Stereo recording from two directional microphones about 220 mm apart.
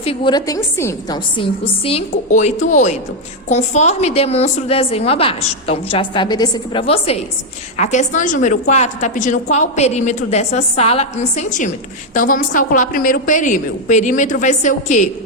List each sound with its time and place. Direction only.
0.0 s a woman's voice: 25° left (ahead or behind)
1.4 s a woman's voice: 25° left (ahead or behind)